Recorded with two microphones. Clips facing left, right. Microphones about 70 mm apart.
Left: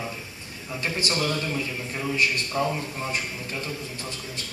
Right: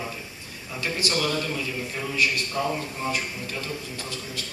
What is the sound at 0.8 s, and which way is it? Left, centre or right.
Speech, left.